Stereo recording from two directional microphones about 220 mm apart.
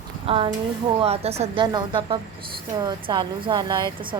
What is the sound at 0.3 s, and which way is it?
A woman's voice, 25° right (ahead or behind).